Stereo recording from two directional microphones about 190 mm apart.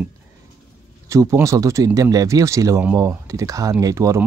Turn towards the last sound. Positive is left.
turn(degrees=-15)  # may be behind; listen again after turning